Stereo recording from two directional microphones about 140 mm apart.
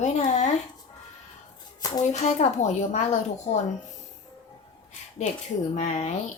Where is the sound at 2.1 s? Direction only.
55° left (ahead or behind).